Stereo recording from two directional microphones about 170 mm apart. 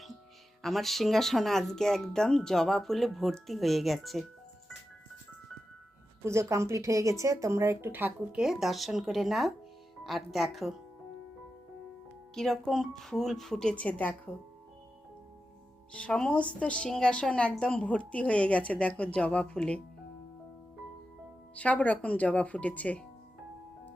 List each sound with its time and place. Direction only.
0.6 s speech: centre (ahead or behind)
6.2 s speech: 15° right (ahead or behind); by 10.8 s centre (ahead or behind)
12.3 s speech: centre (ahead or behind)
15.9 s a woman's voice: 5° left (ahead or behind)
21.5 s a woman's voice: 10° left (ahead or behind)